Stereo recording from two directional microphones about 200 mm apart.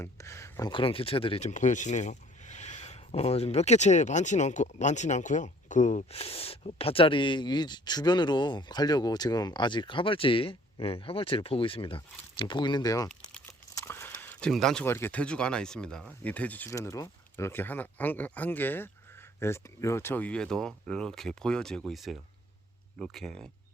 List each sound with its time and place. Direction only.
0.0 s speech: 15° left (ahead or behind)
0.7 s speech: 25° left (ahead or behind)
13.7 s a sound: 10° left (ahead or behind)
14.2 s speech: 5° left (ahead or behind)